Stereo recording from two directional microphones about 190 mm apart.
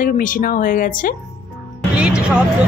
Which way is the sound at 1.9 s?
5° right (ahead or behind).